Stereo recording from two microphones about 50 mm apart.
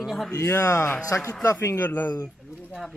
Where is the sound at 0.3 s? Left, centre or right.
Left.